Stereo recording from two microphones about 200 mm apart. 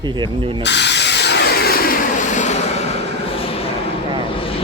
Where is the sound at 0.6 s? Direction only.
60° left (ahead or behind); by 3.7 s 30° left (ahead or behind).